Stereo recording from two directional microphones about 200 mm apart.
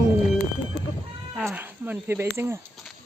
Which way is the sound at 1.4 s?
10° right (ahead or behind).